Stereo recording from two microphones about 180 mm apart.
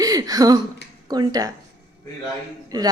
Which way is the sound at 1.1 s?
20° right (ahead or behind).